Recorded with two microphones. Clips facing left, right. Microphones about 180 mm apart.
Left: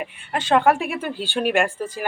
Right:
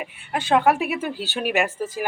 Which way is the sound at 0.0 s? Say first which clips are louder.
Left 1 dB; 10° right (ahead or behind).